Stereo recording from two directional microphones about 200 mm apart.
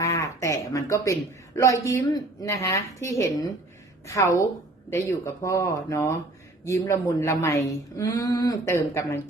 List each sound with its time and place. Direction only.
0.0 s a man's voice: 15° left (ahead or behind)